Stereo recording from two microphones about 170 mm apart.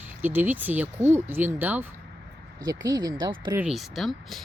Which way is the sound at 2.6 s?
20° right (ahead or behind).